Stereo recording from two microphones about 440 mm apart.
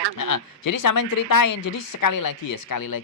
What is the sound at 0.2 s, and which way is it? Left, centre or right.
A woman's voice, left.